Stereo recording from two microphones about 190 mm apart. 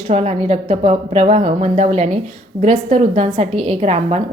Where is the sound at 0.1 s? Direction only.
35° right (ahead or behind).